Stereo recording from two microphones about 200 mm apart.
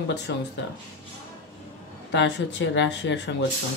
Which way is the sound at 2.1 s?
65° left (ahead or behind).